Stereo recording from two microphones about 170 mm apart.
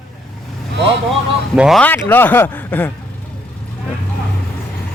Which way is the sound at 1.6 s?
Centre (ahead or behind).